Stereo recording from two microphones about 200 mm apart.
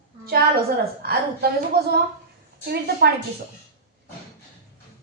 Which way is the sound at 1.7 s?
50° right (ahead or behind).